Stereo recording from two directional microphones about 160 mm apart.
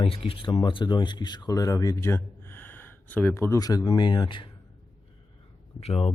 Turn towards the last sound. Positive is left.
turn(degrees=35)  # may be behind; listen again after turning